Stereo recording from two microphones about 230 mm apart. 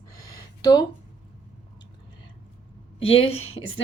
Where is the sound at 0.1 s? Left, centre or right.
Centre.